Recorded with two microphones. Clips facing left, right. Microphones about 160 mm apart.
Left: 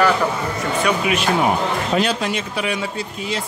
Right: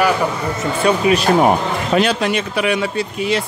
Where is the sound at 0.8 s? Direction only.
35° right (ahead or behind).